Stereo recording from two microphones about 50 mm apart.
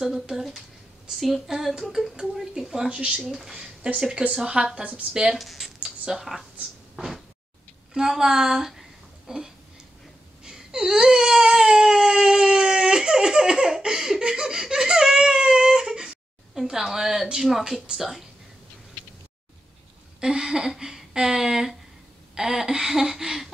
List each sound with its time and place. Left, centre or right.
0.0 s speech: centre
1.2 s a sound: centre
2.1 s speech: centre
2.9 s a woman's voice: right
3.3 s speech: centre
3.6 s a woman's voice: right
4.8 s a woman's voice: right
5.2 s a sound: centre
5.8 s a sound: centre
7.9 s speech: centre
10.4 s whimper: centre
17.9 s a sound: centre
20.2 s speech: centre